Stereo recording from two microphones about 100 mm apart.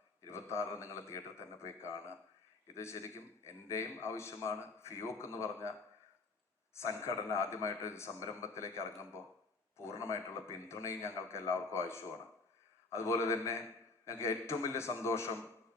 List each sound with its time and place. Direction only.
0.3 s a man's voice: 25° left (ahead or behind)
6.7 s a man's voice: 30° left (ahead or behind)